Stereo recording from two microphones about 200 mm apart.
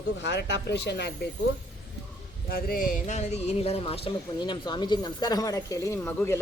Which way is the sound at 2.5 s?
45° left (ahead or behind).